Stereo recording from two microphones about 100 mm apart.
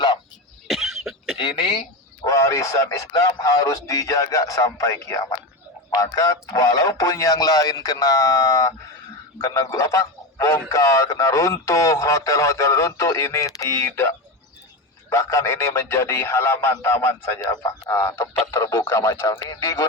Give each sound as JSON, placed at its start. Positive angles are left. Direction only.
{"t": 0.7, "sound": "cough", "side_deg": -5}
{"t": 1.4, "sound": "speech", "side_deg": 55}
{"t": 2.2, "sound": "a man's voice", "side_deg": 30}
{"t": 15.1, "sound": "speech", "side_deg": 30}